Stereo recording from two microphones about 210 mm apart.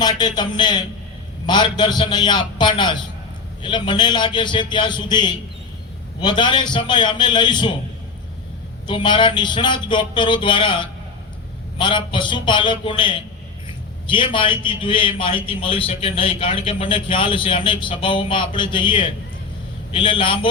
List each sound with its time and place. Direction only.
0.0 s a man's voice: 20° left (ahead or behind)
8.9 s a man's voice: 25° left (ahead or behind)